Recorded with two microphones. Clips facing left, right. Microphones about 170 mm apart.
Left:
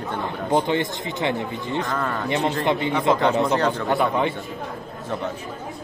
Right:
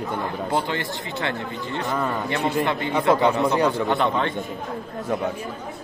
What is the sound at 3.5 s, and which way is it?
Speech, 15° right (ahead or behind).